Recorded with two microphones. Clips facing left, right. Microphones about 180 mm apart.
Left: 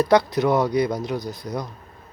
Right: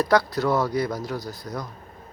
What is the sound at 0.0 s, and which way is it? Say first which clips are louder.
Speech: left 3 dB; 20° left (ahead or behind).